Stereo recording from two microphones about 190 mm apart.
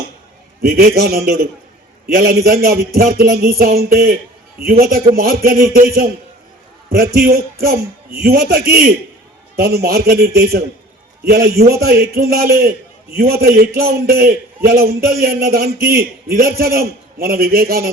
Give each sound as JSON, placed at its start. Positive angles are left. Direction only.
{"t": 0.6, "sound": "a man's voice", "side_deg": -55}
{"t": 6.9, "sound": "a man's voice", "side_deg": -50}